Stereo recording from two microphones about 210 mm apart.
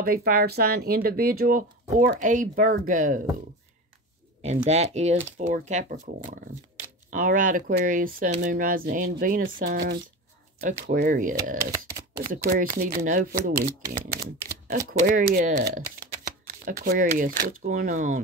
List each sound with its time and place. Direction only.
0.0 s speech: 45° right (ahead or behind)
4.6 s speech: 30° right (ahead or behind)
11.6 s speech: 15° right (ahead or behind)
12.2 s speech: 40° right (ahead or behind)